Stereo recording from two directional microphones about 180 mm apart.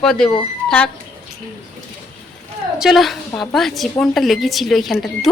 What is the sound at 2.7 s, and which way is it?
A woman's voice, centre (ahead or behind).